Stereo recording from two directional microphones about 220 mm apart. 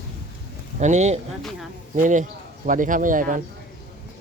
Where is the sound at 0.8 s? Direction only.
30° right (ahead or behind).